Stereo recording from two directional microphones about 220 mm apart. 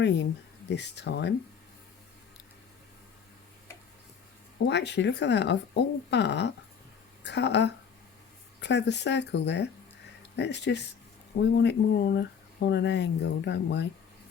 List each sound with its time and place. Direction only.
0.7 s speech: 50° left (ahead or behind)
4.5 s speech: 50° left (ahead or behind)